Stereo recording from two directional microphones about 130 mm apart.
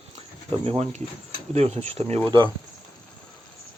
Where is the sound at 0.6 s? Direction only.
55° right (ahead or behind).